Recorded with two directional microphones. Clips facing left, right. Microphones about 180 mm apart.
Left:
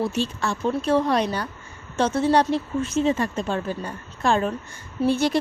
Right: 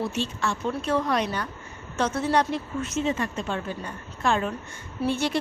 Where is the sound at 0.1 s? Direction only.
35° left (ahead or behind).